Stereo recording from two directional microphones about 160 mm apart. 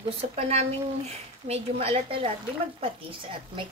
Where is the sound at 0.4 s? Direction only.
40° right (ahead or behind).